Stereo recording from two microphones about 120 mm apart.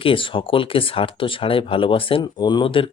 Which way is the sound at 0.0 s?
45° left (ahead or behind).